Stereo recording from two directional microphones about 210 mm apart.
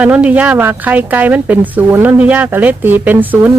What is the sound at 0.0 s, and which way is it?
Speech, 5° right (ahead or behind).